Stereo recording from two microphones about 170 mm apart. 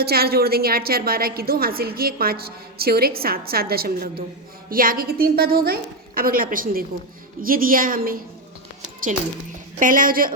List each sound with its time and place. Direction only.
0.0 s a woman's voice: 65° right (ahead or behind)
9.7 s speech: 50° right (ahead or behind)